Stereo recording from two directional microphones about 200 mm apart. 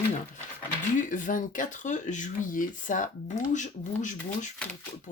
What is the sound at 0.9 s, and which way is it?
Speech, 40° left (ahead or behind).